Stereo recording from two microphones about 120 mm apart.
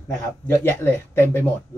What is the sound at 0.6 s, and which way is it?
Speech, 20° left (ahead or behind).